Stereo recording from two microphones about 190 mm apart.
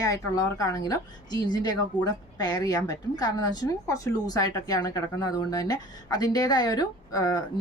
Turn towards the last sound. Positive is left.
turn(degrees=20)  # may be behind; listen again after turning